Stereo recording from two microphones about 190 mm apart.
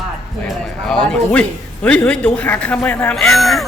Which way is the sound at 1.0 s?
5° left (ahead or behind).